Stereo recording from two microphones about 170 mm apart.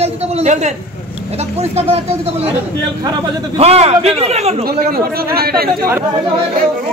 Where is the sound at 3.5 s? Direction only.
35° right (ahead or behind).